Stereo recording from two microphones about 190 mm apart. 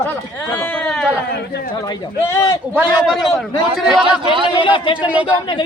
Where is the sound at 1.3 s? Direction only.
60° left (ahead or behind).